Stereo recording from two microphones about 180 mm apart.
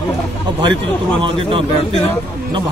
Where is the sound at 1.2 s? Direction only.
30° right (ahead or behind).